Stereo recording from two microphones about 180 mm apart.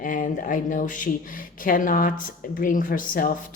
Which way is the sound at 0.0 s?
45° left (ahead or behind).